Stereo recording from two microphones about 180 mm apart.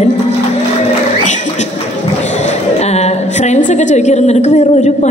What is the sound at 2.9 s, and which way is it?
A woman's voice, 40° left (ahead or behind).